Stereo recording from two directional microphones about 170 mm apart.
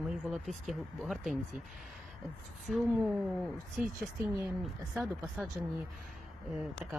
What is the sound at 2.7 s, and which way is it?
Speech, centre (ahead or behind).